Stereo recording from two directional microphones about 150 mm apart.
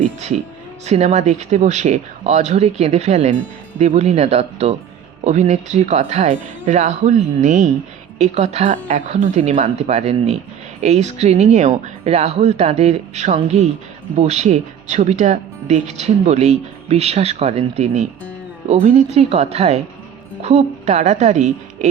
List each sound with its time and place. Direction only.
0.9 s speech: 50° right (ahead or behind)